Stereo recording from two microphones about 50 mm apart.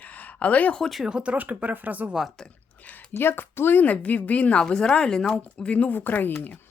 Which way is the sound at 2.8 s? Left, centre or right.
Left.